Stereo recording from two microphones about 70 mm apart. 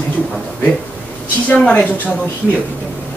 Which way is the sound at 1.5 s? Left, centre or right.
Centre.